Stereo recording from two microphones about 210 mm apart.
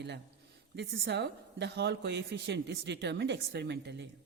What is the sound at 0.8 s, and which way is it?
A woman's voice, 55° right (ahead or behind).